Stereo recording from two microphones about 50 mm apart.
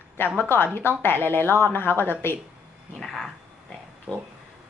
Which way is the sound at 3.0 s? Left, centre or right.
Centre.